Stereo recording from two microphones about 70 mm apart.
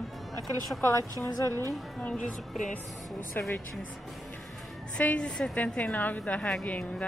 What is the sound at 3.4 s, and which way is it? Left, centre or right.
Speech, left.